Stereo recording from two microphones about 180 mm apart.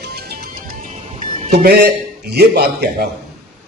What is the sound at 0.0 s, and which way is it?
Music, 60° right (ahead or behind).